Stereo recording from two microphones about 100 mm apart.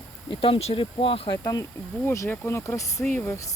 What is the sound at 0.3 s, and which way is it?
Speech, 65° left (ahead or behind).